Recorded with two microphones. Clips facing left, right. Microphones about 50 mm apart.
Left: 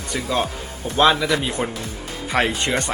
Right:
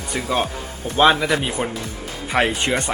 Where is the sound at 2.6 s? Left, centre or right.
Right.